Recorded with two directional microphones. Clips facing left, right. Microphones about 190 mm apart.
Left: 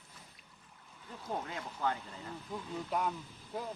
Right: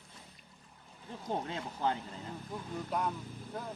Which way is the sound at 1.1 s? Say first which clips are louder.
Right 3 dB; 25° right (ahead or behind).